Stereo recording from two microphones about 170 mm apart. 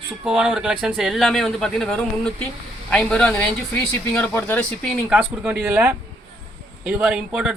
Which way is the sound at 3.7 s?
15° left (ahead or behind).